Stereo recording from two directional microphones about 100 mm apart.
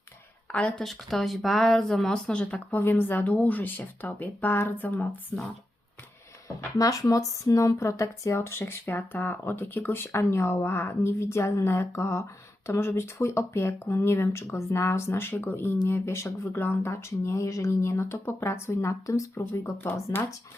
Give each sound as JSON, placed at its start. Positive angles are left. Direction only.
{"t": 0.5, "sound": "speech", "side_deg": 5}
{"t": 6.7, "sound": "speech", "side_deg": 35}